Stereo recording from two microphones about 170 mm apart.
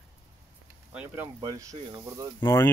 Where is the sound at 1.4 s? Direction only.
20° right (ahead or behind).